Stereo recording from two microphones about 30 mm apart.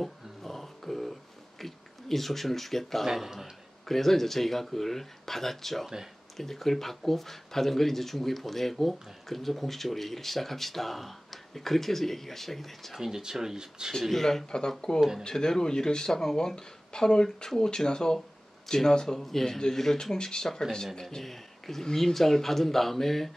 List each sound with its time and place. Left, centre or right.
0.0 s music: centre
1.6 s speech: centre
13.0 s speech: centre
14.1 s speech: centre
14.4 s speech: left
15.0 s speech: centre
15.2 s speech: left
19.1 s speech: centre
21.2 s speech: centre